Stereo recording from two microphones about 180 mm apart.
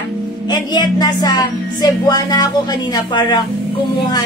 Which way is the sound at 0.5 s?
25° left (ahead or behind).